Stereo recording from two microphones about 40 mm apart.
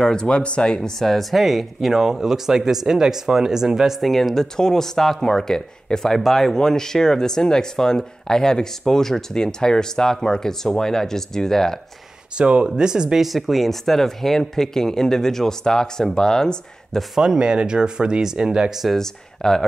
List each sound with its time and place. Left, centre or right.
0.1 s speech: left
0.7 s speech: centre
4.0 s speech: centre
12.4 s speech: right
12.6 s speech: centre
13.2 s speech: centre
17.1 s speech: centre
18.9 s speech: centre